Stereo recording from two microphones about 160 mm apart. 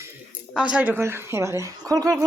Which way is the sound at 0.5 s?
5° right (ahead or behind).